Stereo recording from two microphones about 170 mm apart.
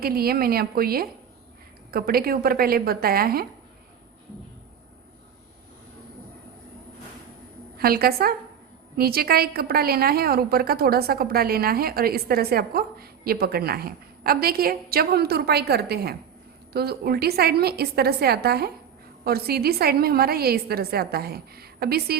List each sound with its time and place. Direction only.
0.0 s a woman's voice: 60° right (ahead or behind)
7.8 s a woman's voice: 60° right (ahead or behind)